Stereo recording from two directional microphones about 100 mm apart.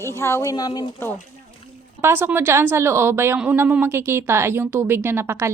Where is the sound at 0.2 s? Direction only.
25° left (ahead or behind).